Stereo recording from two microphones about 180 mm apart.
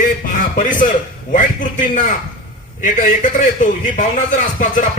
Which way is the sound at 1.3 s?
45° left (ahead or behind).